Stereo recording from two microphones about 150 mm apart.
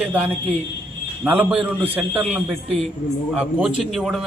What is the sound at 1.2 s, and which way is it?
A man's voice, 10° right (ahead or behind).